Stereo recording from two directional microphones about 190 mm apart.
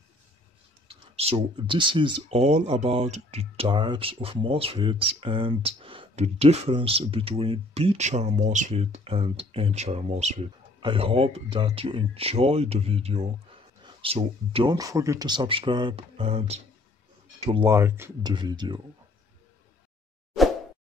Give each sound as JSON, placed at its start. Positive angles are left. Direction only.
{"t": 0.8, "sound": "speech", "side_deg": -30}
{"t": 17.6, "sound": "speech", "side_deg": -15}
{"t": 18.3, "sound": "speech", "side_deg": -25}